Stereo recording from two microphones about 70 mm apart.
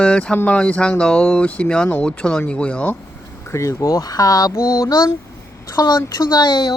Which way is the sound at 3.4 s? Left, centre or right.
Left.